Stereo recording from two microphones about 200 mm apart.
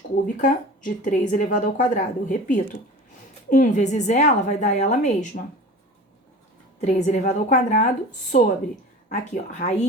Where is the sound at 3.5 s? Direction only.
40° left (ahead or behind).